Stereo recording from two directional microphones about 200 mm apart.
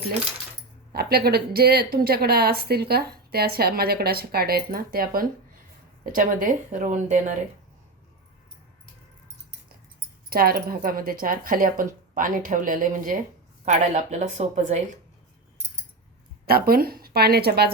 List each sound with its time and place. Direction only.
0.9 s speech: 50° right (ahead or behind)
10.2 s speech: 50° right (ahead or behind)
16.5 s speech: 50° right (ahead or behind)